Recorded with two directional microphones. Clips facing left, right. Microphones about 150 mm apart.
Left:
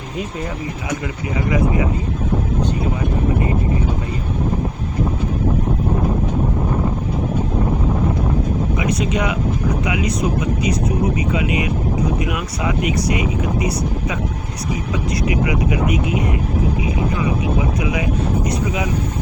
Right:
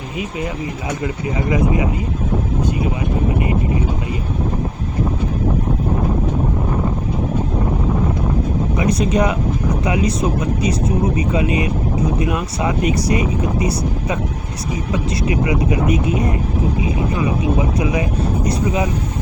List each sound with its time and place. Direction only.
1.0 s speech: 25° right (ahead or behind)
8.8 s speech: 35° right (ahead or behind)
11.3 s speech: 35° right (ahead or behind)
15.3 s speech: 30° right (ahead or behind)
18.4 s speech: 35° right (ahead or behind)